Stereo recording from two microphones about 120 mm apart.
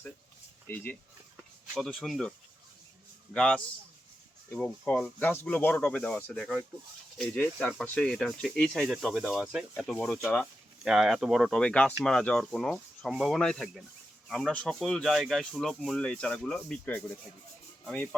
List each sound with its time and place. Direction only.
0.7 s speech: 20° left (ahead or behind)
1.7 s speech: centre (ahead or behind)
3.3 s speech: 5° left (ahead or behind)
4.6 s speech: 10° left (ahead or behind)